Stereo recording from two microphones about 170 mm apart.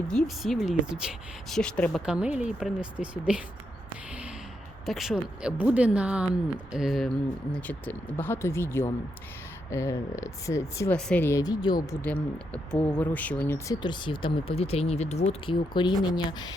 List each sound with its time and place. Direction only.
0.1 s speech: centre (ahead or behind)
2.0 s speech: 5° right (ahead or behind)
4.9 s speech: centre (ahead or behind); by 11.9 s 25° left (ahead or behind)
13.0 s speech: 10° left (ahead or behind)
13.7 s speech: 25° left (ahead or behind)